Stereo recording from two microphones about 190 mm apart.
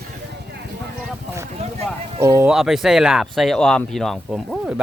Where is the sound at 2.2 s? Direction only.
15° right (ahead or behind).